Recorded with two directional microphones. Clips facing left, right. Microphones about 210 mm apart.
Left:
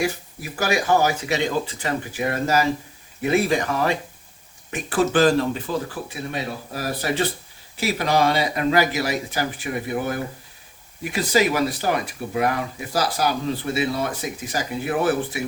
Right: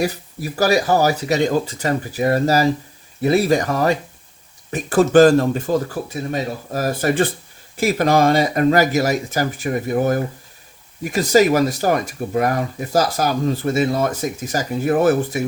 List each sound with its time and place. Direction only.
0.0 s speech: 40° right (ahead or behind)